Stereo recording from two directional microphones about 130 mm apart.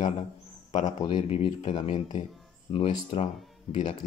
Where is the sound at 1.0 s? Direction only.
45° left (ahead or behind).